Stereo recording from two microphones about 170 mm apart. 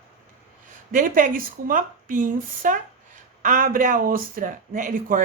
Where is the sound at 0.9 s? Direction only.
50° right (ahead or behind).